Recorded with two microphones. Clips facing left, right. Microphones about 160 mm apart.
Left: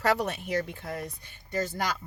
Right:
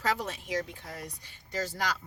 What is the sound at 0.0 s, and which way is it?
Speech, 65° left (ahead or behind).